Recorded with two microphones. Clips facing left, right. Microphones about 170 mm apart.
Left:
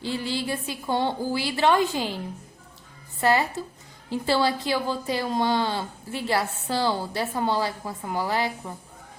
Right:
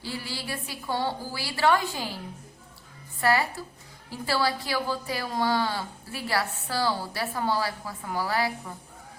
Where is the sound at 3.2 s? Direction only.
20° left (ahead or behind).